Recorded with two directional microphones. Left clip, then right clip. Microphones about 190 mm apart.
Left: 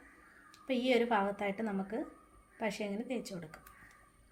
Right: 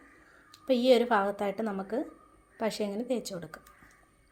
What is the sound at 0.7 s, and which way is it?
A woman's voice, 35° right (ahead or behind).